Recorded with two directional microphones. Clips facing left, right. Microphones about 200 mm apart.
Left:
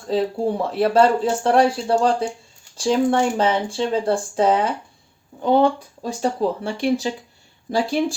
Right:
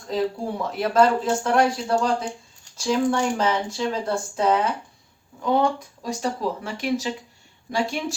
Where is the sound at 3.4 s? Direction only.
30° left (ahead or behind).